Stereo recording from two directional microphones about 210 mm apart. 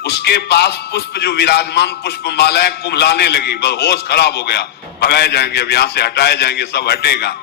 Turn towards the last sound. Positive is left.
turn(degrees=50)  # may be behind; listen again after turning